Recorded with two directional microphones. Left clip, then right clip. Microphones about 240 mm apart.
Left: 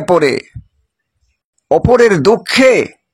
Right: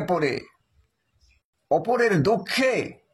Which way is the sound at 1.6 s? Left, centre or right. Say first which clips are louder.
Left 12 dB; left.